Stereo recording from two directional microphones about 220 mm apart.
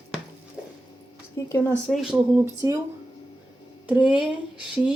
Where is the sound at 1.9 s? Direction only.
Centre (ahead or behind).